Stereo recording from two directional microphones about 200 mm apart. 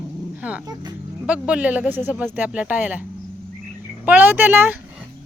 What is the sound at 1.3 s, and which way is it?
Speech, 5° right (ahead or behind).